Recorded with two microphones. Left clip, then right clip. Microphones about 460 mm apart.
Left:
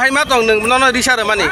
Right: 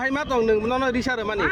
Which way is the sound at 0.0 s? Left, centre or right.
Right.